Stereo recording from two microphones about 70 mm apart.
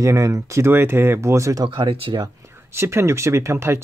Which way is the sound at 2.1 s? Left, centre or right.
Right.